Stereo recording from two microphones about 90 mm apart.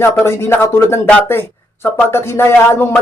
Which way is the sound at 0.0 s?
30° left (ahead or behind).